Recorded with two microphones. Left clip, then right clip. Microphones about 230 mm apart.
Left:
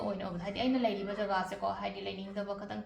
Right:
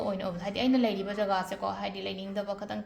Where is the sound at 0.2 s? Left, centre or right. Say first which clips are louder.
Right 4 dB; right.